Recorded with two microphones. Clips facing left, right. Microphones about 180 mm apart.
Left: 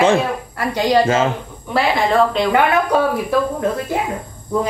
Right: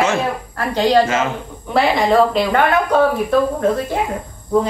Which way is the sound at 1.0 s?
30° left (ahead or behind).